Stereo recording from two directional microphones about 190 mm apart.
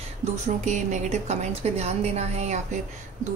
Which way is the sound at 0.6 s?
40° right (ahead or behind).